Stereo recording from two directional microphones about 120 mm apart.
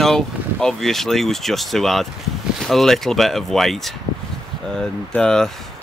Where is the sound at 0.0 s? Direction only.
5° left (ahead or behind).